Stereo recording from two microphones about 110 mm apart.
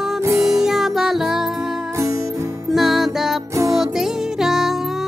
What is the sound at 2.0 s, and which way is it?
Music, 30° right (ahead or behind).